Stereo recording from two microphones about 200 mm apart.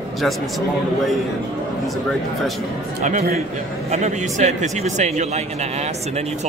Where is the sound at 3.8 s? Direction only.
35° right (ahead or behind).